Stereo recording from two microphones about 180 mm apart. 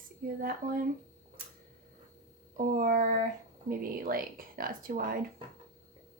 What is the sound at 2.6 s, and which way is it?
A woman's voice, 50° right (ahead or behind).